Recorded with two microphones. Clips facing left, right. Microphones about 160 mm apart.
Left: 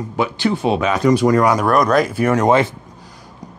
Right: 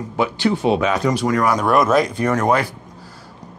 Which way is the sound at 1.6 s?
Centre (ahead or behind).